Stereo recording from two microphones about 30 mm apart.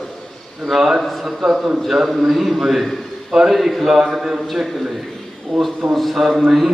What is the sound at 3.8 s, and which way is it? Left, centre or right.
Speech, centre.